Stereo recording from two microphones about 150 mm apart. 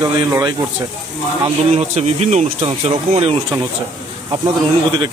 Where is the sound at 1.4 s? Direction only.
45° right (ahead or behind).